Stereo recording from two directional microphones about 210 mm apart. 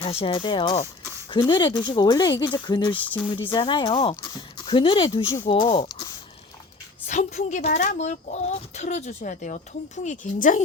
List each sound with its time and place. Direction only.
0.0 s speech: 30° left (ahead or behind)
2.9 s speech: 5° left (ahead or behind)
3.3 s speech: 25° left (ahead or behind)
7.1 s speech: 35° left (ahead or behind)